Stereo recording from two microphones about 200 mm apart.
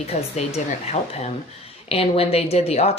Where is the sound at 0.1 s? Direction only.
35° left (ahead or behind).